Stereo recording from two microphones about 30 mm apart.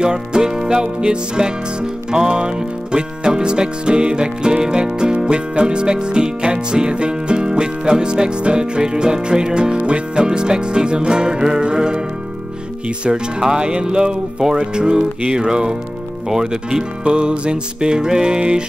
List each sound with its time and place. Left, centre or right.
0.0 s music: right
13.1 s music: right
16.3 s speech: centre
17.0 s music: right